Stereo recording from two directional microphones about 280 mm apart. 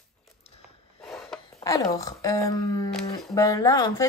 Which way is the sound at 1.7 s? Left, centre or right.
Centre.